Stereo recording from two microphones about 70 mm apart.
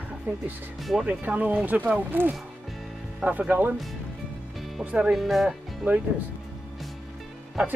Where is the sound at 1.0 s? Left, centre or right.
Right.